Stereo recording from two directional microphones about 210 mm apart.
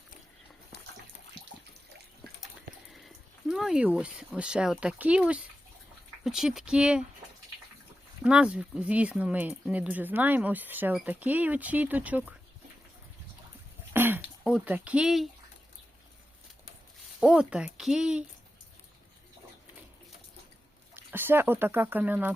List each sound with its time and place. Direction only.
3.5 s speech: 5° right (ahead or behind)
8.2 s speech: 5° right (ahead or behind)
13.9 s throat clearing: 10° right (ahead or behind)
17.2 s speech: 5° right (ahead or behind)
20.9 s speech: 10° right (ahead or behind)